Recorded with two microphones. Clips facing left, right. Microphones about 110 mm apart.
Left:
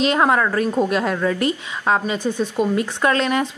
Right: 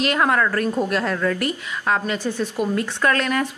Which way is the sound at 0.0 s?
20° left (ahead or behind).